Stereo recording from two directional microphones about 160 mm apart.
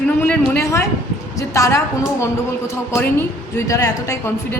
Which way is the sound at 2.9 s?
15° left (ahead or behind).